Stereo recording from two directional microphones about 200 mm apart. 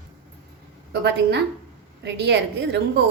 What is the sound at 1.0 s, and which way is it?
A woman's voice, 60° right (ahead or behind).